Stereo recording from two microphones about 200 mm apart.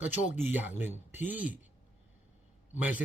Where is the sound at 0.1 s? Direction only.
40° left (ahead or behind).